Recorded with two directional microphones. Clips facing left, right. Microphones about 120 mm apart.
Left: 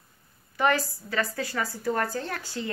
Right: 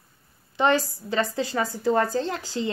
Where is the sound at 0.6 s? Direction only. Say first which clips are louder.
Right 3 dB; 25° right (ahead or behind).